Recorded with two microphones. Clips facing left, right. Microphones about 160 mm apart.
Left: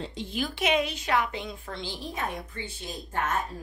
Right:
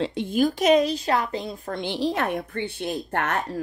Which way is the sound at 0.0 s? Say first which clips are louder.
Right 10 dB; 60° right (ahead or behind).